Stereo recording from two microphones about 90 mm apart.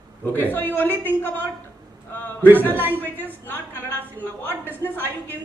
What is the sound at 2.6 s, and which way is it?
Speech, 20° left (ahead or behind).